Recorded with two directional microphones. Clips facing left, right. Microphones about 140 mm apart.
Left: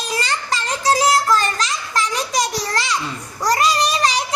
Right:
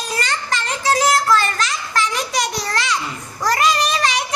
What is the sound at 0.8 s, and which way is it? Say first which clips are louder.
Child singing: left 1 dB; 35° left (ahead or behind).